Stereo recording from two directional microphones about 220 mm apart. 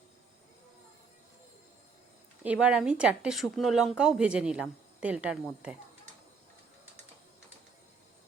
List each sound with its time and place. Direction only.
2.4 s speech: 5° right (ahead or behind)